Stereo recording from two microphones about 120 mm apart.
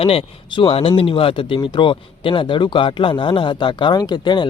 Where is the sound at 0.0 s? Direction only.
50° left (ahead or behind).